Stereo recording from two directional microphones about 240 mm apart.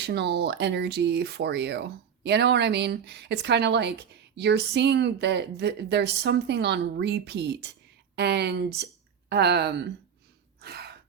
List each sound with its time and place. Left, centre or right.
0.0 s speech: right
10.6 s gasp: right